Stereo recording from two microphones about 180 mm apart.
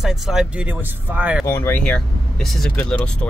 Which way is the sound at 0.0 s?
Centre (ahead or behind).